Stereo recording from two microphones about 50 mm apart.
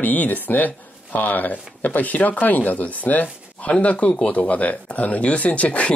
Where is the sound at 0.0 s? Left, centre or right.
Left.